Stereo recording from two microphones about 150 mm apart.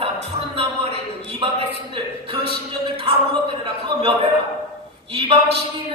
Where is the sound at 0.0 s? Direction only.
40° right (ahead or behind).